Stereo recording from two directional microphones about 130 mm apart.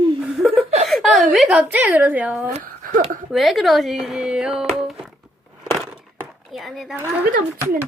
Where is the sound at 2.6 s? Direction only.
90° right.